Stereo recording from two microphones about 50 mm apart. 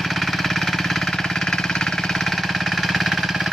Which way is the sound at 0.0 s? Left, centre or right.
Centre.